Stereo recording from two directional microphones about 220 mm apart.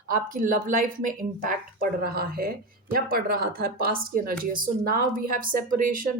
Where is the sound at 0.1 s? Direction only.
40° right (ahead or behind).